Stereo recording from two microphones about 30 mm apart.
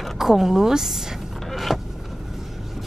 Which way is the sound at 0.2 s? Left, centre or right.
Centre.